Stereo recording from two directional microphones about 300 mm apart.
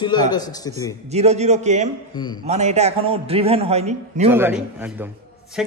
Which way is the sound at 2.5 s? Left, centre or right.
Right.